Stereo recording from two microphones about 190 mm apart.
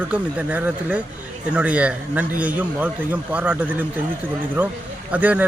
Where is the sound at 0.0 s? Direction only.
10° right (ahead or behind).